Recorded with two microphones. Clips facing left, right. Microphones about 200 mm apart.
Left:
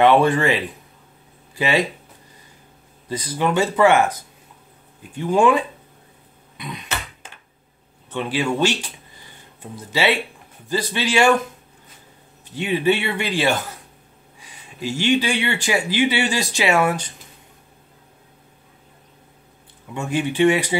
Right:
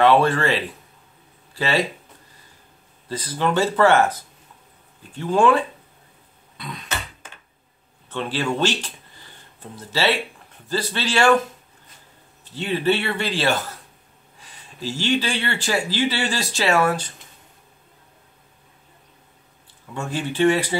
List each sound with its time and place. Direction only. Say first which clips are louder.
0.0 s speech: left 2 dB; 15° left (ahead or behind)
3.1 s speech: left 1 dB; 15° left (ahead or behind)
6.5 s a sound: left 2 dB; 15° left (ahead or behind)
8.1 s speech: left 2 dB; 10° left (ahead or behind)
12.4 s speech: left 2 dB; 15° left (ahead or behind)
19.9 s speech: left 4 dB; 15° left (ahead or behind)